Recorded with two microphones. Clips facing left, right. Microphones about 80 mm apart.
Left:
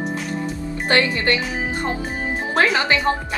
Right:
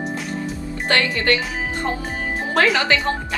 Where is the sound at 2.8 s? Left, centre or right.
Left.